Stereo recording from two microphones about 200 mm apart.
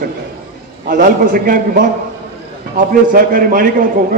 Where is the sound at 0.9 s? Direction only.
45° right (ahead or behind).